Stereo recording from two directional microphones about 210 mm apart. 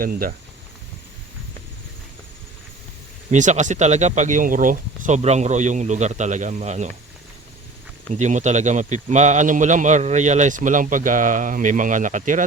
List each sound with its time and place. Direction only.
0.0 s speech: 45° right (ahead or behind)
3.3 s a man's voice: 35° right (ahead or behind)
8.1 s a man's voice: 35° right (ahead or behind)